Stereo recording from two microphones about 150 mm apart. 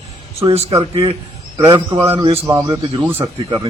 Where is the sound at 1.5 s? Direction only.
25° right (ahead or behind).